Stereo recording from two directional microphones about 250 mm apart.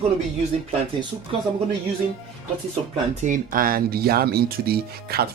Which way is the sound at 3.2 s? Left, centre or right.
Right.